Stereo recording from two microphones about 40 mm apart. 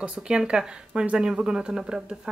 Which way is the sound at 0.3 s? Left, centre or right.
Centre.